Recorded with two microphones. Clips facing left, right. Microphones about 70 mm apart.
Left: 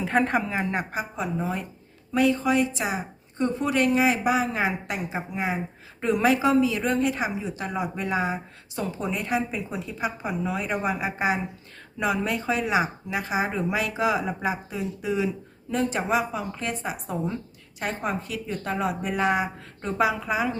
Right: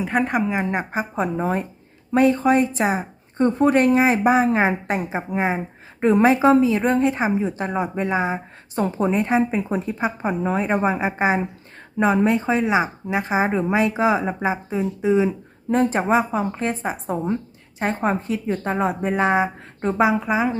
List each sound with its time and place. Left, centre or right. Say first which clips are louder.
0.0 s a woman's voice: right 2 dB; centre
0.4 s speech: right 5 dB; centre
1.1 s speech: right 8 dB; right
8.8 s speech: right 8 dB; right